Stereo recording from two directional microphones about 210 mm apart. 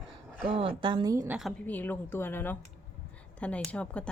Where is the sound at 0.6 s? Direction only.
25° right (ahead or behind).